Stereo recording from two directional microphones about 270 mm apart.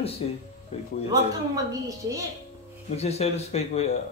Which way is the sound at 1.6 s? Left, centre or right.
Centre.